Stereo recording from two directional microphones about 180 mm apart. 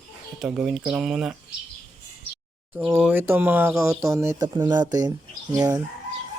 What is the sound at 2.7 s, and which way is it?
Speech, 5° right (ahead or behind).